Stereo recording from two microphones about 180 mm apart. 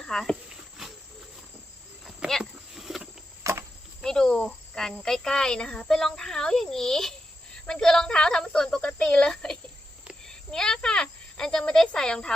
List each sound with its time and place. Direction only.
0.1 s speech: 5° left (ahead or behind)
0.8 s cricket: centre (ahead or behind)
2.0 s a sound: centre (ahead or behind)
3.4 s cricket: 15° right (ahead or behind)
4.0 s speech: 5° left (ahead or behind)
10.0 s cricket: centre (ahead or behind)